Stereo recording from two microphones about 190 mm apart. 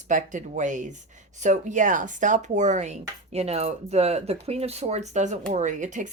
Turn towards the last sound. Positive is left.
turn(degrees=-40)  # may be behind; listen again after turning